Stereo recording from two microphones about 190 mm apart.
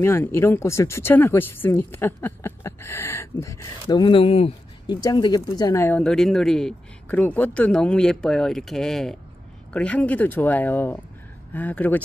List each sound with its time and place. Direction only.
0.0 s speech: 15° left (ahead or behind)
3.9 s speech: 25° left (ahead or behind); by 12.0 s 10° left (ahead or behind)